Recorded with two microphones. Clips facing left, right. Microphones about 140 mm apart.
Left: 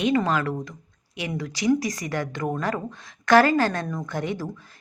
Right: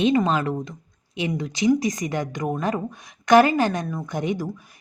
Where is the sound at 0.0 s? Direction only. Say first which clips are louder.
Right 2 dB; 20° right (ahead or behind).